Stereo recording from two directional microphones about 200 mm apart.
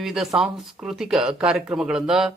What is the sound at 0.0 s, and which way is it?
Speech, centre (ahead or behind).